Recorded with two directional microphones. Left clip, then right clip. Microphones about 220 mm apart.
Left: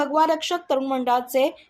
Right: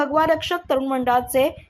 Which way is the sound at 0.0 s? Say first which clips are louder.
Right 1 dB; 15° right (ahead or behind).